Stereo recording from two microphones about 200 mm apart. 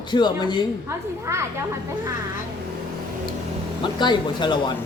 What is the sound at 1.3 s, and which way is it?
Speech, 15° right (ahead or behind).